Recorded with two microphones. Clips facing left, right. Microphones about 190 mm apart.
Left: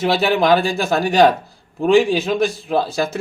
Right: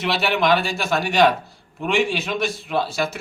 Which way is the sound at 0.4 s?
35° left (ahead or behind).